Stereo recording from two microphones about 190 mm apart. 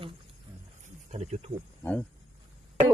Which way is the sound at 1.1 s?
35° right (ahead or behind).